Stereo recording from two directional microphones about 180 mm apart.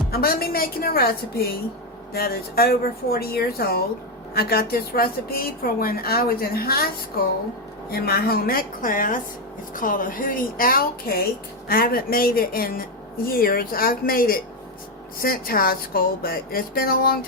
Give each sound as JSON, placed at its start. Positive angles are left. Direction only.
{"t": 0.1, "sound": "a woman's voice", "side_deg": 55}